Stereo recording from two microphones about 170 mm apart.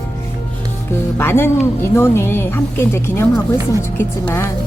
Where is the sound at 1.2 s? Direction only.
15° left (ahead or behind).